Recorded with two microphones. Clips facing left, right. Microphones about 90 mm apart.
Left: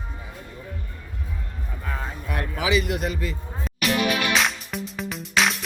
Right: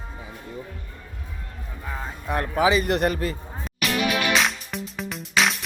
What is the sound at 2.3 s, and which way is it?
Speech, 35° right (ahead or behind).